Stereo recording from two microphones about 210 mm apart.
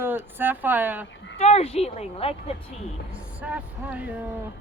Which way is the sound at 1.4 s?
30° left (ahead or behind).